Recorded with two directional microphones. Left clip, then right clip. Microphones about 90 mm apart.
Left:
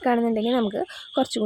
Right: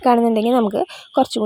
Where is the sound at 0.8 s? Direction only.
70° right (ahead or behind).